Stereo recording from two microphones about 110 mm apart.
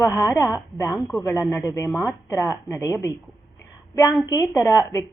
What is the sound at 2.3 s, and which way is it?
Speech, 25° left (ahead or behind).